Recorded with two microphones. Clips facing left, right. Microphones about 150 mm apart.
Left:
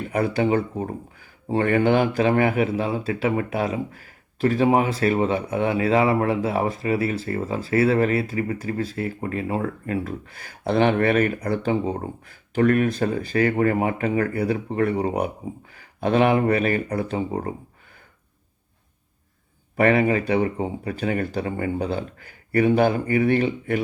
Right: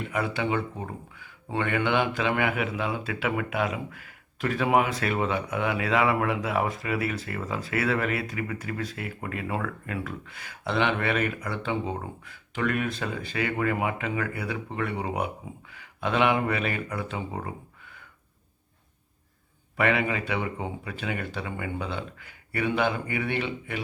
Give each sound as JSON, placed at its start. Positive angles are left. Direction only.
{"t": 0.0, "sound": "speech", "side_deg": 40}
{"t": 19.7, "sound": "speech", "side_deg": 40}